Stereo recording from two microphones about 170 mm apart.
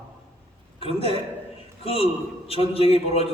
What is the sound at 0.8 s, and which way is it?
A man's voice, 35° left (ahead or behind).